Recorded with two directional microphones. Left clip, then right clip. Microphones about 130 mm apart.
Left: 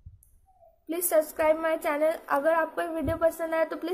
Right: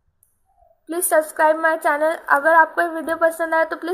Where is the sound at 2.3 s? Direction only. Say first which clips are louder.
Right 15 dB; 10° left (ahead or behind).